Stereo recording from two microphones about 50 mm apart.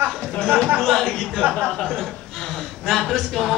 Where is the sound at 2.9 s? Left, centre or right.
Centre.